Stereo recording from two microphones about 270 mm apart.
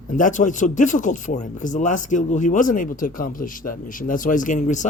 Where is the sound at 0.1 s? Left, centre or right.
Left.